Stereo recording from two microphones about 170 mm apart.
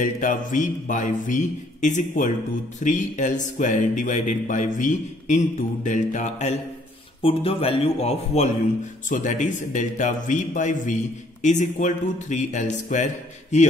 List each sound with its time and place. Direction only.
0.0 s a man's voice: 50° left (ahead or behind)
9.1 s a man's voice: 45° left (ahead or behind)